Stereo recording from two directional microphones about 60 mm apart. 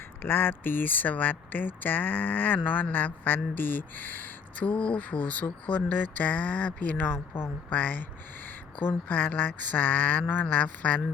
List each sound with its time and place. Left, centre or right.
0.2 s speech: left